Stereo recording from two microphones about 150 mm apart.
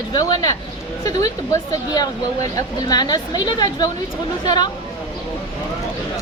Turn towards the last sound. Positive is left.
turn(degrees=30)  # may be behind; listen again after turning